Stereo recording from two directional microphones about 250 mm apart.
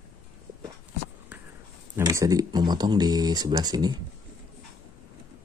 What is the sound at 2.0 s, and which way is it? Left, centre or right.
Speech, centre.